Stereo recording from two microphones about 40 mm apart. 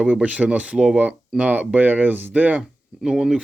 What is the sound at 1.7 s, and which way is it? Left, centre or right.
Speech, right.